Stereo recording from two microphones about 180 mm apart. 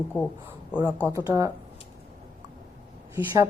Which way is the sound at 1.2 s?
15° right (ahead or behind).